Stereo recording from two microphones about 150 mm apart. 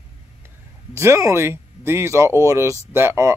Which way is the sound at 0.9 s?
20° right (ahead or behind).